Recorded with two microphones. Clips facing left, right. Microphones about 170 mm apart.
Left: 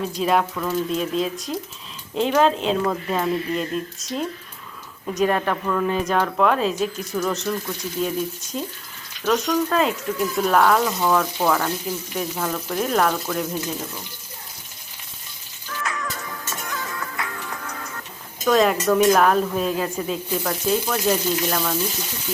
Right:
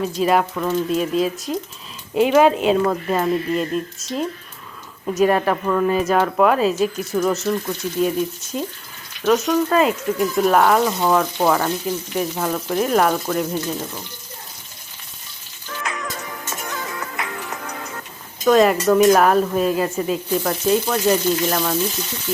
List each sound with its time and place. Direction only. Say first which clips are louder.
0.2 s speech: right 3 dB; 5° right (ahead or behind)
0.5 s speech: right 3 dB; 15° right (ahead or behind)
0.9 s speech: right 4 dB; 5° right (ahead or behind)
8.5 s speech: right 5 dB; 5° right (ahead or behind)
15.8 s music: right 1 dB; 20° right (ahead or behind)
18.4 s speech: right 4 dB; 5° right (ahead or behind)